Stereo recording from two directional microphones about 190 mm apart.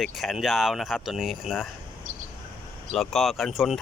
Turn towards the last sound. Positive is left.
turn(degrees=0)  # may be behind; listen again after turning